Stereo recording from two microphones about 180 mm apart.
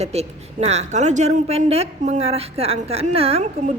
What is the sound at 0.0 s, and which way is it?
A woman's voice, 35° right (ahead or behind).